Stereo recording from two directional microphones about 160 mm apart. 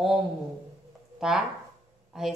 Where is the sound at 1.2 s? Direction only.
5° right (ahead or behind).